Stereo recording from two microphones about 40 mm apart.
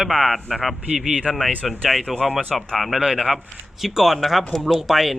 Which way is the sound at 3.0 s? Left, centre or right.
Centre.